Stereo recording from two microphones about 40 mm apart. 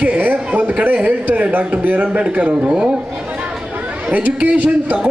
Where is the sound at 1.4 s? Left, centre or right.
Right.